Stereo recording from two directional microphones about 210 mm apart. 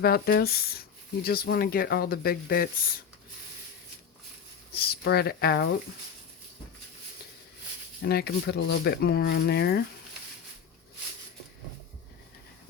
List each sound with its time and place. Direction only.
0.0 s speech: 50° left (ahead or behind)
4.7 s speech: 50° left (ahead or behind)
8.0 s speech: 50° left (ahead or behind)